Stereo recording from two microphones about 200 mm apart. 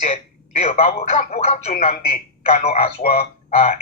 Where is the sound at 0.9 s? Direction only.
40° left (ahead or behind).